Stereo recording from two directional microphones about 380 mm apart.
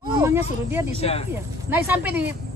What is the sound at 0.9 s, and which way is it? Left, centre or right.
Speech, centre.